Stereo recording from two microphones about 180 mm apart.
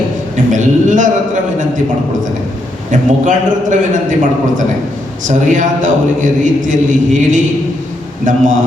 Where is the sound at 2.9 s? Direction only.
45° right (ahead or behind).